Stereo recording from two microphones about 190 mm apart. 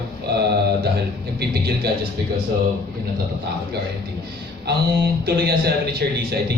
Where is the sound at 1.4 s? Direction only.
55° right (ahead or behind).